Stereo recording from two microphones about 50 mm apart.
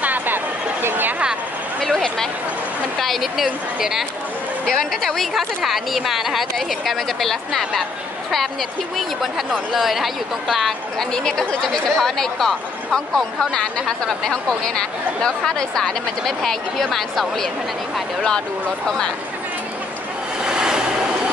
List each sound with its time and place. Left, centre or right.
0.0 s a sound: right
0.8 s speech: right
1.8 s a woman's voice: centre
4.6 s speech: centre
5.3 s a woman's voice: centre
8.9 s a woman's voice: centre
11.1 s speech: centre
20.4 s vehicle: centre